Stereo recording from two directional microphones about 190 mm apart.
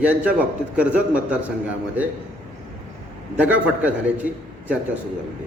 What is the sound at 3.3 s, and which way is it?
Speech, 5° right (ahead or behind).